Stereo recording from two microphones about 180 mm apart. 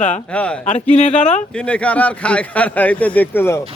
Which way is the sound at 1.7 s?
5° left (ahead or behind).